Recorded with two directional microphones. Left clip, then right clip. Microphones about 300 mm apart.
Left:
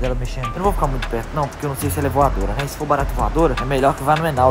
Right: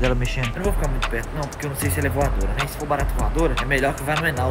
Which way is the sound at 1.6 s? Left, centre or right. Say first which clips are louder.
Left 3 dB; centre.